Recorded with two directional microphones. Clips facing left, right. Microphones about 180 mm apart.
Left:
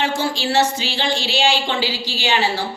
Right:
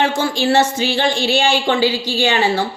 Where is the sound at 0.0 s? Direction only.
50° right (ahead or behind).